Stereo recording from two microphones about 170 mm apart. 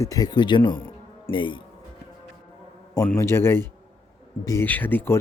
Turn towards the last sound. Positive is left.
turn(degrees=10)  # may be behind; listen again after turning